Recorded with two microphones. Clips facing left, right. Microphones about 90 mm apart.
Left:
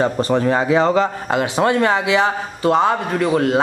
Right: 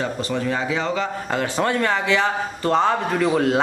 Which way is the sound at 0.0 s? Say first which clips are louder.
Left 7 dB; 40° left (ahead or behind).